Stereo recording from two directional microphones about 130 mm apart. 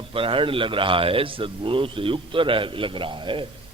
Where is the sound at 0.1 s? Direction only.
40° right (ahead or behind).